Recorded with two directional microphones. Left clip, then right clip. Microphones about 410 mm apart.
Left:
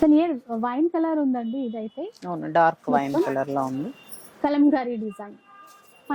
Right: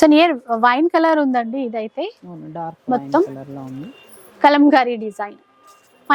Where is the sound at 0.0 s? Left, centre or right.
Centre.